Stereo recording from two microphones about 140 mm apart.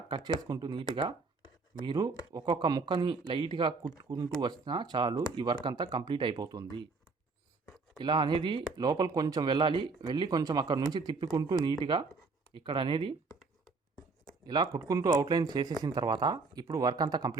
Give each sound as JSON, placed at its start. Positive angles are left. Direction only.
{"t": 0.3, "sound": "speech", "side_deg": -30}
{"t": 7.9, "sound": "speech", "side_deg": -30}
{"t": 14.4, "sound": "speech", "side_deg": -30}